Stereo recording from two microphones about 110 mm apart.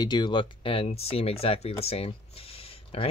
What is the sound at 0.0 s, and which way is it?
Speech, 45° left (ahead or behind).